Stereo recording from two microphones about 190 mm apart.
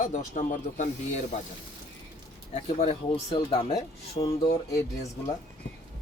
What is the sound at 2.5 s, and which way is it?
Speech, 35° left (ahead or behind).